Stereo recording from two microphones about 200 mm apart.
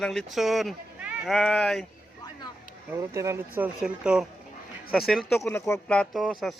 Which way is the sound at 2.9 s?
15° right (ahead or behind).